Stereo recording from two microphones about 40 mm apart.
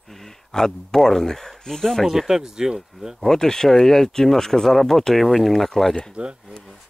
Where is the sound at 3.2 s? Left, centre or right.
Centre.